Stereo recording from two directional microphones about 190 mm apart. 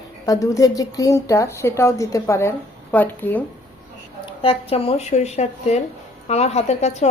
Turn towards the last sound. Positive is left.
turn(degrees=35)  # may be behind; listen again after turning